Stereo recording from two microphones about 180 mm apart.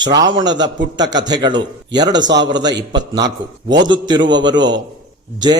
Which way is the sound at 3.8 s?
25° right (ahead or behind).